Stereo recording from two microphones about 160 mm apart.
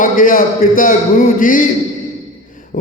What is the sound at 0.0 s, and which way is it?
Speech, 60° left (ahead or behind).